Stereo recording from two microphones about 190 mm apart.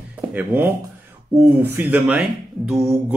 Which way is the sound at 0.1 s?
10° right (ahead or behind).